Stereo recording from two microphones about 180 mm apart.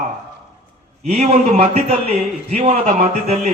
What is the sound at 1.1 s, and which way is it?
A man's voice, 40° right (ahead or behind).